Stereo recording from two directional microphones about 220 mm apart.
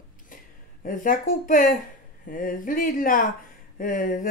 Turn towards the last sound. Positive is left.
turn(degrees=35)  # may be behind; listen again after turning